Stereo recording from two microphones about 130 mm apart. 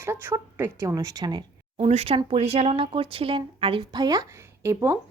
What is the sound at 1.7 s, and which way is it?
Speech, 50° right (ahead or behind).